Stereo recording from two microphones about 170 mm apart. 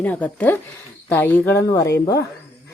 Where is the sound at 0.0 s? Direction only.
10° left (ahead or behind).